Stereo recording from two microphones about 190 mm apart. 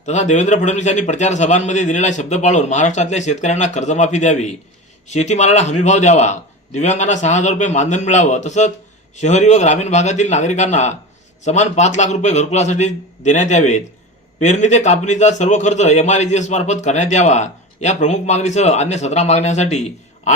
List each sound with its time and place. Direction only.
0.0 s a man's voice: 40° left (ahead or behind)